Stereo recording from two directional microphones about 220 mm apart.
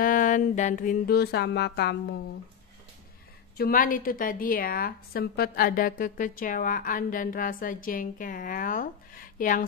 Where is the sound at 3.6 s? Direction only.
40° left (ahead or behind).